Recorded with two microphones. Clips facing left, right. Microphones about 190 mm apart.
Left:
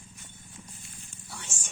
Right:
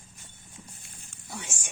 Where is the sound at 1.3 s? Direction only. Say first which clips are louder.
Right 5 dB; 15° right (ahead or behind).